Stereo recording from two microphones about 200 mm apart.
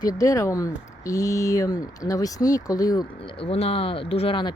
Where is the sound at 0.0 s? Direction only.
15° left (ahead or behind).